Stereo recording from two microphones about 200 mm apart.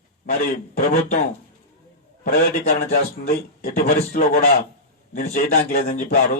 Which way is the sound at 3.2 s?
50° left (ahead or behind).